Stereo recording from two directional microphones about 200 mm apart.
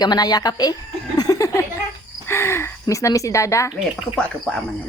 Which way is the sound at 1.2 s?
15° left (ahead or behind).